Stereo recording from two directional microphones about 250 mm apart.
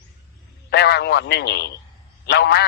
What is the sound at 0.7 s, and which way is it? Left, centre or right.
A man's voice, left.